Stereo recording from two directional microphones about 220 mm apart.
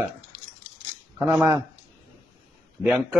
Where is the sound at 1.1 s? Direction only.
10° right (ahead or behind).